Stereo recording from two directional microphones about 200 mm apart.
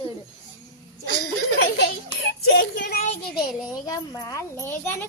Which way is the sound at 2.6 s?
60° left (ahead or behind).